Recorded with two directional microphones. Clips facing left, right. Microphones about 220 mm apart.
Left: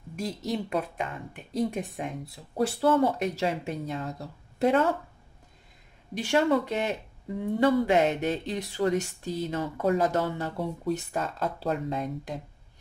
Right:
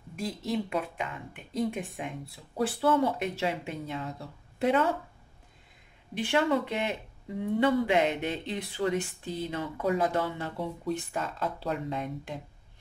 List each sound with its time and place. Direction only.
0.1 s speech: 40° left (ahead or behind)
6.1 s speech: 40° left (ahead or behind)